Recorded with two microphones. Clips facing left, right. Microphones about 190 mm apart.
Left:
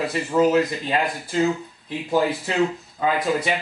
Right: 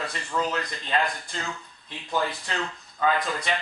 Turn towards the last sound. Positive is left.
turn(degrees=5)  # may be behind; listen again after turning